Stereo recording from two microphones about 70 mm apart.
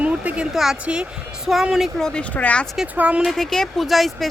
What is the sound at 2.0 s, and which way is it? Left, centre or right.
Speech, centre.